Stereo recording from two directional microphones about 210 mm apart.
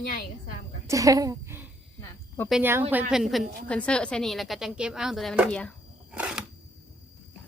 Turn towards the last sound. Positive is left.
turn(degrees=-5)  # may be behind; listen again after turning